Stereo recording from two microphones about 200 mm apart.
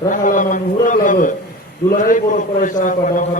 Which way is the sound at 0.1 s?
40° left (ahead or behind).